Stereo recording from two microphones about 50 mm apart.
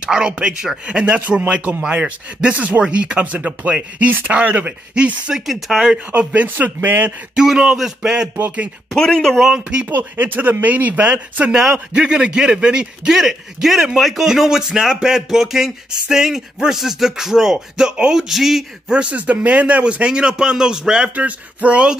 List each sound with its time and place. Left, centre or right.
0.0 s a man's voice: centre
5.3 s speech: centre
6.1 s a man's voice: right
7.3 s a man's voice: centre
8.4 s speech: right
8.9 s speech: centre
9.8 s speech: right
11.5 s a man's voice: centre
18.3 s speech: centre
18.9 s a man's voice: right
21.1 s a man's voice: right